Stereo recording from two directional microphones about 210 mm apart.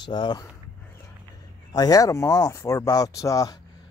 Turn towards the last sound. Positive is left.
turn(degrees=15)  # may be behind; listen again after turning